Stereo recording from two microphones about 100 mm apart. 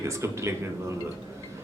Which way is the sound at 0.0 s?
30° right (ahead or behind).